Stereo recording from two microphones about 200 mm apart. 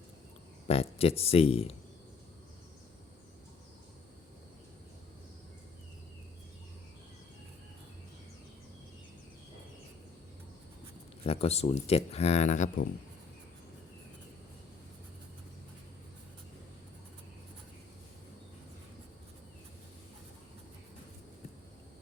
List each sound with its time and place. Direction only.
0.7 s speech: 30° left (ahead or behind)
11.2 s speech: 30° left (ahead or behind)